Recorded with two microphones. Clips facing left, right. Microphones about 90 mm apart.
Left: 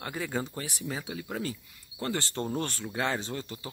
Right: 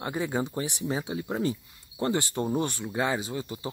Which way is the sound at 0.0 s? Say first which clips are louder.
Right 4 dB; 20° right (ahead or behind).